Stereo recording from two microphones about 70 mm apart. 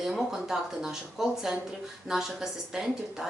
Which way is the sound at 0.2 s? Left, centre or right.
Centre.